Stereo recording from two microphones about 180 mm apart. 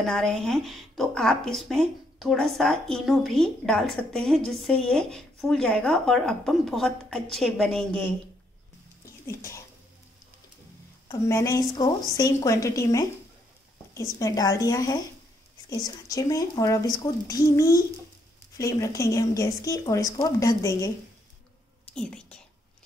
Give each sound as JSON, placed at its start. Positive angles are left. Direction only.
{"t": 0.0, "sound": "speech", "side_deg": 0}
{"t": 9.0, "sound": "a sound", "side_deg": 15}
{"t": 11.1, "sound": "a woman's voice", "side_deg": 15}
{"t": 14.1, "sound": "speech", "side_deg": 20}
{"t": 21.9, "sound": "speech", "side_deg": 5}